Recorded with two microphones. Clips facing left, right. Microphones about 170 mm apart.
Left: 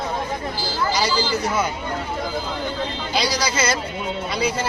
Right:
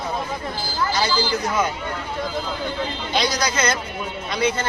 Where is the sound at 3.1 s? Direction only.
10° left (ahead or behind).